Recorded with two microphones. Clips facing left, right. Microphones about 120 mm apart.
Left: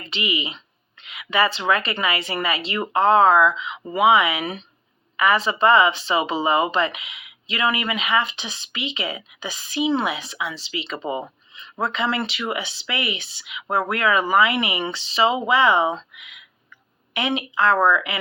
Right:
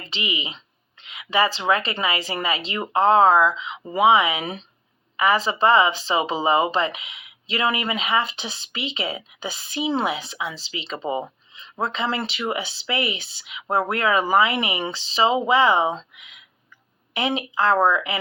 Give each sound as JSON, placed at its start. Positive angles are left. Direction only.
{"t": 0.1, "sound": "speech", "side_deg": -25}